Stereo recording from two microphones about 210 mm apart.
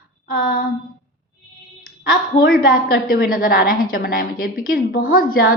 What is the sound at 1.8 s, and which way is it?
A woman's voice, 45° left (ahead or behind).